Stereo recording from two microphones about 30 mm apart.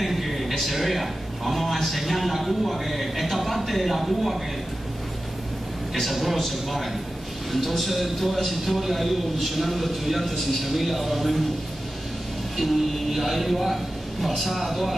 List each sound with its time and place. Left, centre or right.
0.0 s a man's voice: centre
5.9 s a man's voice: centre
13.1 s a man's voice: centre